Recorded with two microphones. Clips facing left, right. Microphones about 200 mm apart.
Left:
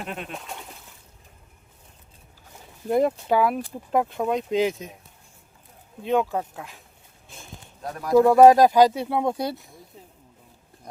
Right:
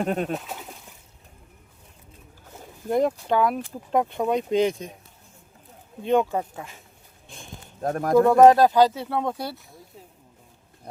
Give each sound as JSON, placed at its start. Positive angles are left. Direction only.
{"t": 0.0, "sound": "speech", "side_deg": -40}
{"t": 0.3, "sound": "speech", "side_deg": -5}
{"t": 2.9, "sound": "speech", "side_deg": 5}
{"t": 6.0, "sound": "speech", "side_deg": 0}
{"t": 7.3, "sound": "a sound", "side_deg": 5}
{"t": 7.8, "sound": "speech", "side_deg": -50}
{"t": 8.1, "sound": "speech", "side_deg": 5}